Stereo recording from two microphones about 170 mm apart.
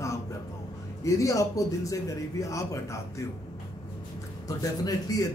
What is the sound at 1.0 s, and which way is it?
A man's voice, 20° left (ahead or behind).